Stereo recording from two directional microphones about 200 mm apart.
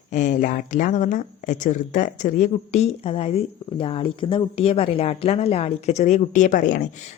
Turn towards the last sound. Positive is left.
turn(degrees=40)  # may be behind; listen again after turning